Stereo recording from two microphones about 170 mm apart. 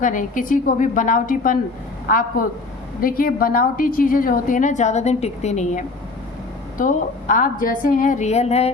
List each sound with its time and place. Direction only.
0.0 s a woman's voice: 50° left (ahead or behind)